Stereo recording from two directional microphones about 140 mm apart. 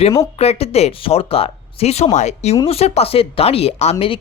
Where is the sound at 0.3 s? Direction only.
45° left (ahead or behind).